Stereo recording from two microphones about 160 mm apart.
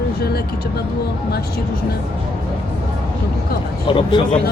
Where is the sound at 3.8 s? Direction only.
30° left (ahead or behind).